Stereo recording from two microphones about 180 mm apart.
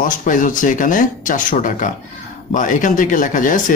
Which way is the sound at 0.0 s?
45° left (ahead or behind).